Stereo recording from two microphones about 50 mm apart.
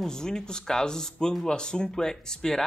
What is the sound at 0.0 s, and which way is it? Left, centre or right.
Speech, centre.